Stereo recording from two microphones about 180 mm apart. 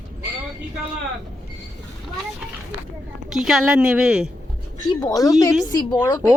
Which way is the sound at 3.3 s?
Centre (ahead or behind).